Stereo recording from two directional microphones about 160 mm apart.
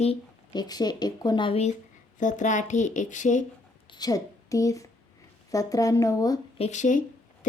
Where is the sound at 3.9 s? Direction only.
25° left (ahead or behind).